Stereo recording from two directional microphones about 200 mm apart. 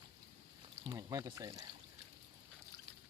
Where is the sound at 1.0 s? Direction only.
20° right (ahead or behind).